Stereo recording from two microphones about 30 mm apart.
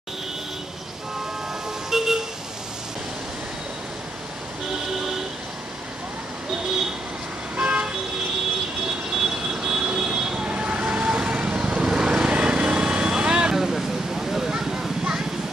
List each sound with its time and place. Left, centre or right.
1.9 s vehicle: centre
7.6 s vehicle: right
8.8 s vehicle: centre
10.5 s vehicle: right
11.1 s vehicle: right
12.3 s vehicle: right
13.6 s a sound: centre